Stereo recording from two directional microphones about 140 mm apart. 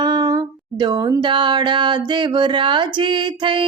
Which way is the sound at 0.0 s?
30° right (ahead or behind).